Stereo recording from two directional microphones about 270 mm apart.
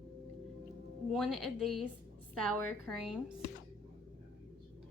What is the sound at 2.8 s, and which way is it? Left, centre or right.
Speech, centre.